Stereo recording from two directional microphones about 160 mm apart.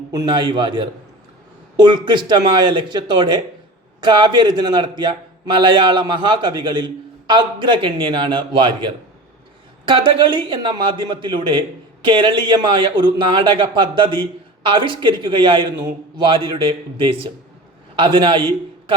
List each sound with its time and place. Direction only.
0.1 s a man's voice: 25° right (ahead or behind)